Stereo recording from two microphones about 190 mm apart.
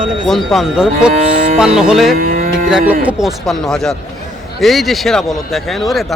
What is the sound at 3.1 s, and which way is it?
A man's voice, centre (ahead or behind).